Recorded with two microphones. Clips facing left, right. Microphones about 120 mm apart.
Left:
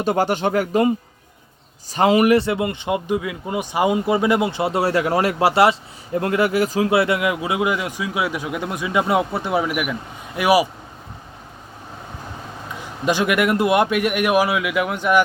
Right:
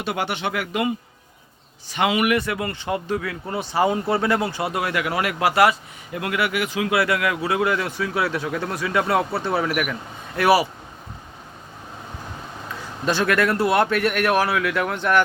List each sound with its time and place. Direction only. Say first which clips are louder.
0.0 s speech: left 6 dB; 40° left (ahead or behind)
1.9 s speech: left 6 dB; 40° left (ahead or behind); by 10.7 s 10° left (ahead or behind)
13.1 s speech: left 2 dB; 15° left (ahead or behind)